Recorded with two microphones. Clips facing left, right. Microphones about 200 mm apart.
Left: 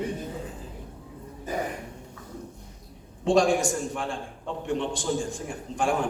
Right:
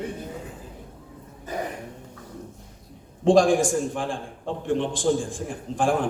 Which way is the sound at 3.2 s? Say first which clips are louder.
Right 4 dB; 55° right (ahead or behind).